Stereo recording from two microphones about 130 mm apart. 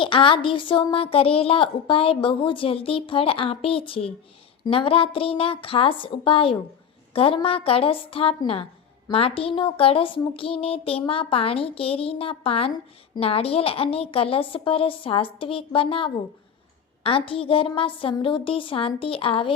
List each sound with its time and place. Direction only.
0.0 s a woman's voice: 40° left (ahead or behind)